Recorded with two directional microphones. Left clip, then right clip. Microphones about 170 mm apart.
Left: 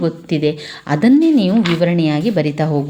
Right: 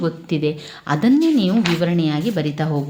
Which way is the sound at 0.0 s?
20° left (ahead or behind).